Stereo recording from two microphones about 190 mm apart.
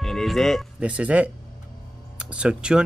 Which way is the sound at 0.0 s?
Centre (ahead or behind).